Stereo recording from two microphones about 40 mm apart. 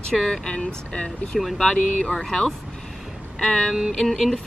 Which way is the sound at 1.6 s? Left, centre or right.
Left.